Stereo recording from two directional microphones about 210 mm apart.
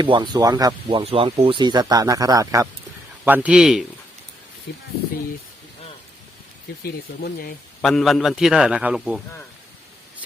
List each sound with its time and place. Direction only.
0.0 s a man's voice: 20° right (ahead or behind); by 3.8 s centre (ahead or behind)
6.8 s speech: 45° left (ahead or behind)
7.8 s a man's voice: centre (ahead or behind)